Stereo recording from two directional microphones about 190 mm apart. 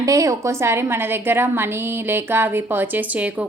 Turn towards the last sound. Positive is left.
turn(degrees=-10)  # may be behind; listen again after turning